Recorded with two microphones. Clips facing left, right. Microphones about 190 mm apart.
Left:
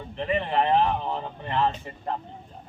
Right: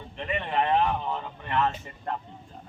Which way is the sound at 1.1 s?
30° left (ahead or behind).